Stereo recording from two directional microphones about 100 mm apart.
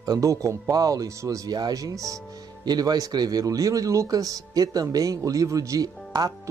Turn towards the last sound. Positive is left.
turn(degrees=-40)  # may be behind; listen again after turning